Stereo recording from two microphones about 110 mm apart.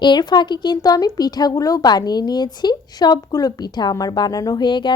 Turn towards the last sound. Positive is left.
turn(degrees=45)  # may be behind; listen again after turning